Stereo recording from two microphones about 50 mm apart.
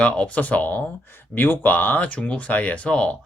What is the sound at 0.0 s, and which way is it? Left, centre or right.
Speech, left.